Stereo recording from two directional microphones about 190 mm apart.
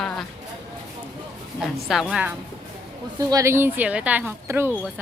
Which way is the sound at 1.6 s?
Centre (ahead or behind).